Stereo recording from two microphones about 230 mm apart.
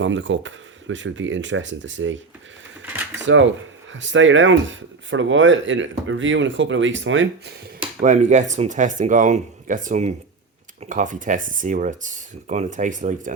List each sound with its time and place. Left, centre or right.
0.0 s speech: right
3.2 s speech: right
8.0 s speech: right